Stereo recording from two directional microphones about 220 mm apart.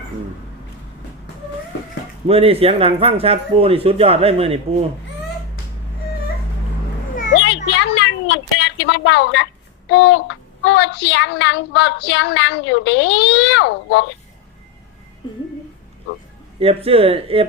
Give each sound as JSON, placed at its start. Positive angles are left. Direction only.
{"t": 2.2, "sound": "speech", "side_deg": -25}
{"t": 7.3, "sound": "a sound", "side_deg": 55}
{"t": 9.9, "sound": "a woman's voice", "side_deg": 55}
{"t": 16.6, "sound": "speech", "side_deg": -25}